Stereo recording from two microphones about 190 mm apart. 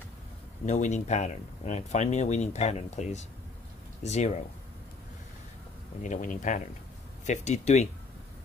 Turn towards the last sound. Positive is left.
turn(degrees=35)  # may be behind; listen again after turning